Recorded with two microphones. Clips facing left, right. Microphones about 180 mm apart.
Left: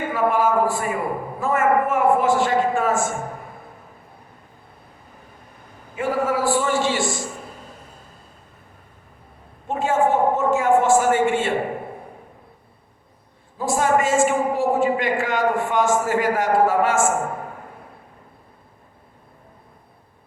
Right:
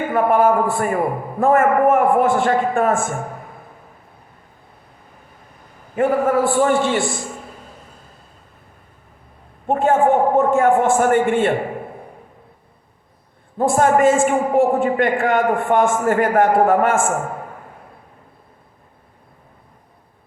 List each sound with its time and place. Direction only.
0.1 s a man's voice: 55° right (ahead or behind)
6.0 s a man's voice: 55° right (ahead or behind)
9.6 s a sound: 55° right (ahead or behind)
13.6 s a man's voice: 55° right (ahead or behind)